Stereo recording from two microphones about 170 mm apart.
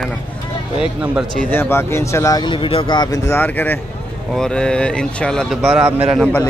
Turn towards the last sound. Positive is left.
turn(degrees=-10)  # may be behind; listen again after turning